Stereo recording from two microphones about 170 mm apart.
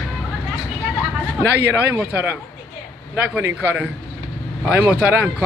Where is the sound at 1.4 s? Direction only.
80° right.